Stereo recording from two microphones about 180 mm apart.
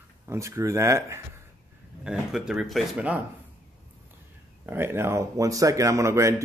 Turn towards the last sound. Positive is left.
turn(degrees=-15)  # may be behind; listen again after turning